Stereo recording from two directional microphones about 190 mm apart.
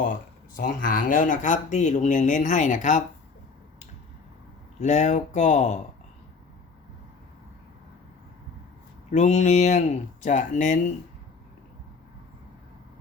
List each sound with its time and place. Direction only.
0.0 s speech: 45° left (ahead or behind)
4.8 s speech: 35° left (ahead or behind)
9.0 s speech: 40° left (ahead or behind)